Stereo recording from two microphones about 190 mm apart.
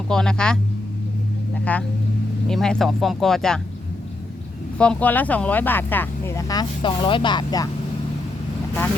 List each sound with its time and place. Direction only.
0.1 s speech: 5° left (ahead or behind)
1.7 s speech: 5° left (ahead or behind)
4.8 s speech: 5° left (ahead or behind)